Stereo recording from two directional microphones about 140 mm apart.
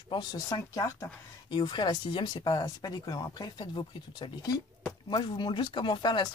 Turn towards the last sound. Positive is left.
turn(degrees=35)  # may be behind; listen again after turning